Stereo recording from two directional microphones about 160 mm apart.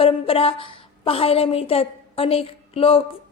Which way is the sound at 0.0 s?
35° left (ahead or behind).